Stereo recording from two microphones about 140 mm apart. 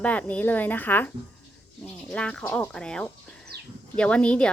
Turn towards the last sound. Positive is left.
turn(degrees=10)  # may be behind; listen again after turning